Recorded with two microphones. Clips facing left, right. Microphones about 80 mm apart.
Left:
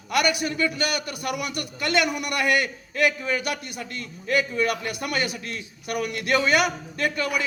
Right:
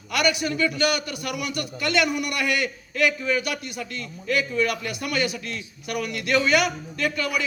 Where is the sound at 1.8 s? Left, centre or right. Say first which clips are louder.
Even; left.